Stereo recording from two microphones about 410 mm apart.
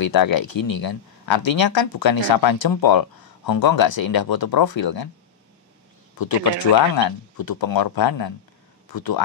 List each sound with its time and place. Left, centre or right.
0.0 s speech: left
6.1 s speech: left